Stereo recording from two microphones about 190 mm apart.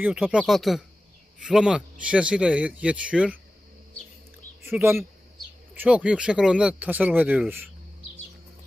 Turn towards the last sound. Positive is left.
turn(degrees=-10)  # may be behind; listen again after turning